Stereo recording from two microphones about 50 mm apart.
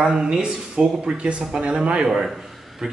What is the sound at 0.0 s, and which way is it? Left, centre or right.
Speech, centre.